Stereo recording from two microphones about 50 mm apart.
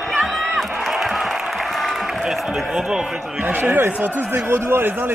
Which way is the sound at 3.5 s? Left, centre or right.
Right.